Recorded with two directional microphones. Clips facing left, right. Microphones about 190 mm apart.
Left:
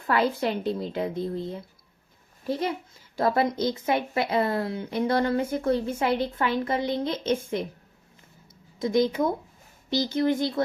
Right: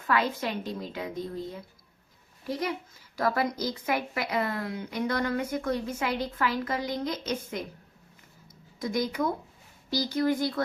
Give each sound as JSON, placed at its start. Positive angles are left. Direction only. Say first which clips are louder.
{"t": 0.0, "sound": "a woman's voice", "louder": "left 4 dB", "side_deg": 35}
{"t": 8.8, "sound": "a woman's voice", "louder": "left 6 dB", "side_deg": 25}